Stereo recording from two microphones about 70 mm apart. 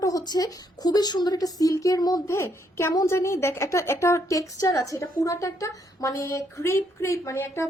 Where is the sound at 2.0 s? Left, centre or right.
Left.